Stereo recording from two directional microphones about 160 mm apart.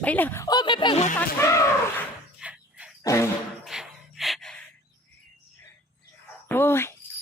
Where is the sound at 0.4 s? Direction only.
25° left (ahead or behind).